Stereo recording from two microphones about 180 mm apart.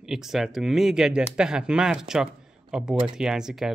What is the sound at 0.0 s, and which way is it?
Speech, centre (ahead or behind).